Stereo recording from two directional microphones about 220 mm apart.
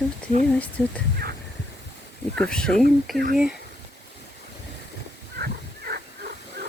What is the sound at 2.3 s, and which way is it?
Speech, 5° left (ahead or behind).